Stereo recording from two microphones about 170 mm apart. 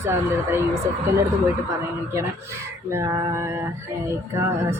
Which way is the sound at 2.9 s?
20° right (ahead or behind).